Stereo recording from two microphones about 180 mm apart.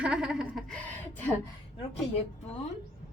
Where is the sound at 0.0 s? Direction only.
5° right (ahead or behind).